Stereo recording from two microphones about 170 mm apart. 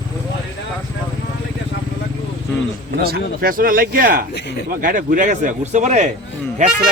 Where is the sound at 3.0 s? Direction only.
60° right (ahead or behind).